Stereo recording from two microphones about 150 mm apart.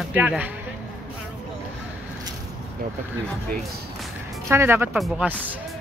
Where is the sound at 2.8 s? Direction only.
75° right (ahead or behind).